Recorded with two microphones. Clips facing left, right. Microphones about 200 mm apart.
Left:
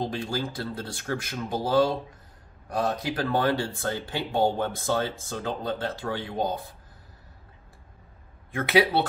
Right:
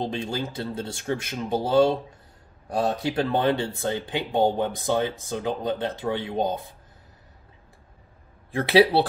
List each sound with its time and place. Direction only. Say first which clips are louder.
0.0 s speech: right 1 dB; 20° right (ahead or behind)
8.5 s speech: right 4 dB; 30° right (ahead or behind)